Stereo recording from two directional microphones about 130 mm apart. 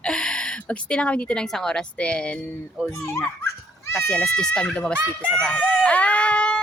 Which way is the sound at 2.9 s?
20° left (ahead or behind).